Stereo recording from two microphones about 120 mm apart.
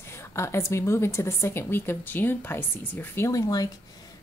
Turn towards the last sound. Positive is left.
turn(degrees=30)  # may be behind; listen again after turning